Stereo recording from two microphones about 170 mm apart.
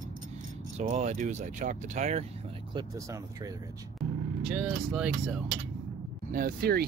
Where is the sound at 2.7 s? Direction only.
25° right (ahead or behind).